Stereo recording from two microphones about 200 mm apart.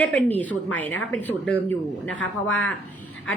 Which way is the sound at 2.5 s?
5° left (ahead or behind).